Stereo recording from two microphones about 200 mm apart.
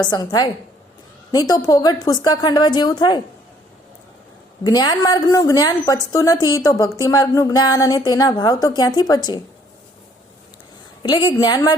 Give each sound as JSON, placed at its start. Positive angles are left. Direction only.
{"t": 0.0, "sound": "a woman's voice", "side_deg": 20}
{"t": 4.6, "sound": "a woman's voice", "side_deg": 20}
{"t": 11.0, "sound": "a woman's voice", "side_deg": 20}